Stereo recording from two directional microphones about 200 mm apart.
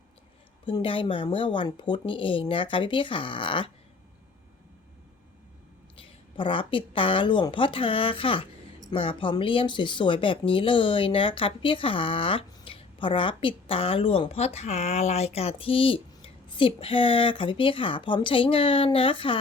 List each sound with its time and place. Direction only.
0.6 s speech: 25° left (ahead or behind)
6.0 s speech: 25° left (ahead or behind)